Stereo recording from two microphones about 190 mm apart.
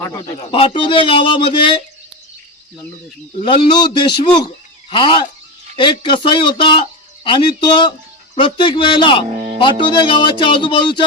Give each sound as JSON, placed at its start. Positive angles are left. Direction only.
{"t": 0.2, "sound": "speech", "side_deg": 30}
{"t": 3.4, "sound": "speech", "side_deg": 25}